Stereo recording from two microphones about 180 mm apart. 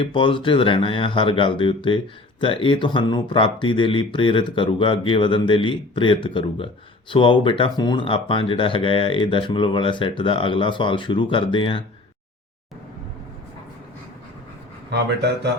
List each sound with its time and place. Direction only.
0.0 s speech: 30° left (ahead or behind)
14.8 s speech: 70° right (ahead or behind)